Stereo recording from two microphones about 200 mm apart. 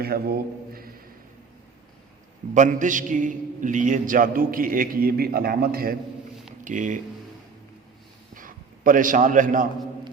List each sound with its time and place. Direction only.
0.0 s a man's voice: 50° right (ahead or behind)
2.6 s a man's voice: 40° right (ahead or behind)
8.4 s a man's voice: 45° right (ahead or behind)